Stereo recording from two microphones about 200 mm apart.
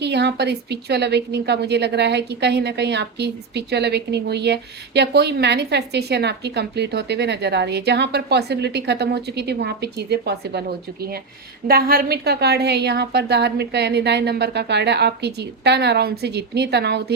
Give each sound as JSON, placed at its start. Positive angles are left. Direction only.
{"t": 0.0, "sound": "a woman's voice", "side_deg": -55}